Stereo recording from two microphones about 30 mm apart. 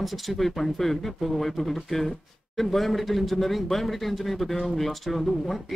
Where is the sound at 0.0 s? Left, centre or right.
Centre.